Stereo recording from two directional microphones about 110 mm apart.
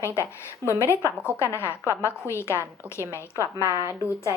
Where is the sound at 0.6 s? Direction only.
25° right (ahead or behind).